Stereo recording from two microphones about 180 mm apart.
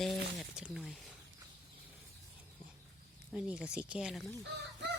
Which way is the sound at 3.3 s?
5° right (ahead or behind).